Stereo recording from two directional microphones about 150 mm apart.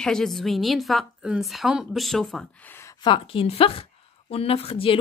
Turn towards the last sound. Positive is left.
turn(degrees=40)  # may be behind; listen again after turning